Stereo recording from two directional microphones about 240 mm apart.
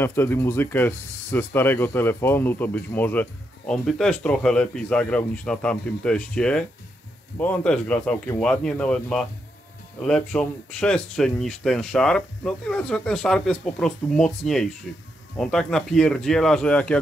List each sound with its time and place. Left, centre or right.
0.0 s speech: centre